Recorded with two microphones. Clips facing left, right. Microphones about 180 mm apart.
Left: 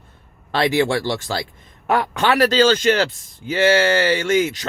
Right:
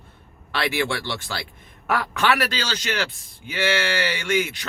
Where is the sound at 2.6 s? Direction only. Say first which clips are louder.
Left 12 dB; 50° left (ahead or behind).